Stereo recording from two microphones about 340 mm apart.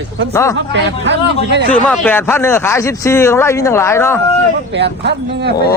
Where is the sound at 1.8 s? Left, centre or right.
Centre.